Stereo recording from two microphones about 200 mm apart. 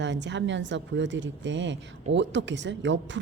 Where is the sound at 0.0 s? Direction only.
60° right (ahead or behind).